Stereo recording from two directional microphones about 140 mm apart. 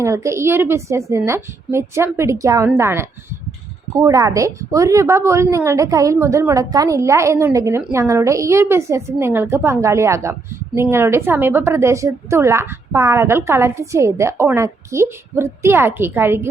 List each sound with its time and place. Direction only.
0.0 s a woman's voice: 20° right (ahead or behind)